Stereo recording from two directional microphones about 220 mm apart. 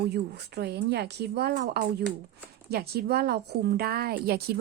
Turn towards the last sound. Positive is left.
turn(degrees=-45)  # may be behind; listen again after turning